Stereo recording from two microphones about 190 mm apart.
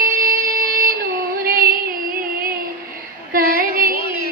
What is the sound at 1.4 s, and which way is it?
Music, 50° right (ahead or behind).